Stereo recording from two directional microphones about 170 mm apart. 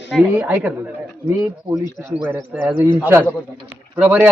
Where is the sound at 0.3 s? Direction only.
10° right (ahead or behind).